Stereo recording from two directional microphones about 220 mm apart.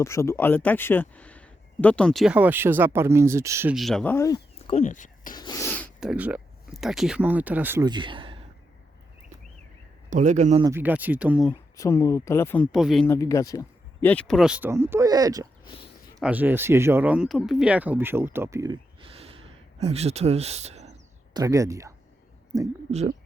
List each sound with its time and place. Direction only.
0.0 s speech: 15° left (ahead or behind); by 3.8 s 10° right (ahead or behind)
3.8 s speech: centre (ahead or behind)
4.5 s a sound: 30° left (ahead or behind)
5.3 s a sound: 20° left (ahead or behind)
6.1 s speech: 5° right (ahead or behind); by 8.4 s 25° right (ahead or behind)
10.1 s a man's voice: 35° right (ahead or behind)
10.6 s speech: 10° right (ahead or behind)
11.8 s speech: 15° left (ahead or behind)
12.7 s speech: centre (ahead or behind)
13.1 s speech: 15° left (ahead or behind); by 15.4 s 15° right (ahead or behind)
15.6 s speech: 25° left (ahead or behind)
16.2 s speech: 5° right (ahead or behind); by 21.0 s 30° right (ahead or behind)
21.3 s speech: 15° right (ahead or behind)
22.9 s speech: 30° right (ahead or behind)